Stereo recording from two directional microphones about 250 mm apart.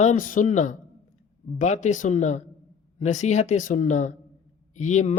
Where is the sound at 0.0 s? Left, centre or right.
Left.